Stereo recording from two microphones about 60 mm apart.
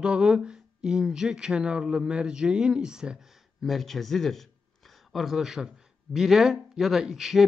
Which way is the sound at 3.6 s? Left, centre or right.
Centre.